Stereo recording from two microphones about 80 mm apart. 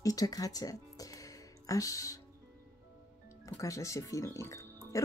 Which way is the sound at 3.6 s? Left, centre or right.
Left.